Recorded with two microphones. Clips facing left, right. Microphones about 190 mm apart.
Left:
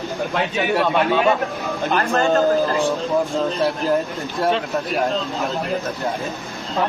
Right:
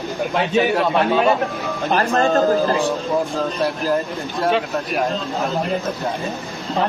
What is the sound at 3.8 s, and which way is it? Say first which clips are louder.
Speech: even; centre (ahead or behind).